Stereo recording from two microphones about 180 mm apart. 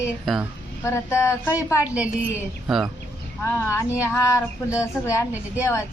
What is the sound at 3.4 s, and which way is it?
Speech, 15° left (ahead or behind).